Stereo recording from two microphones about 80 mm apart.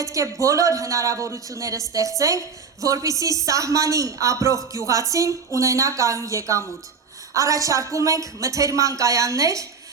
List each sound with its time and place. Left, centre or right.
0.0 s speech: right